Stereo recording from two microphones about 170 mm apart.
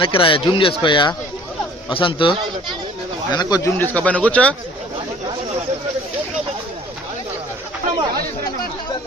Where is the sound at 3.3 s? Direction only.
25° left (ahead or behind); by 4.5 s 10° left (ahead or behind).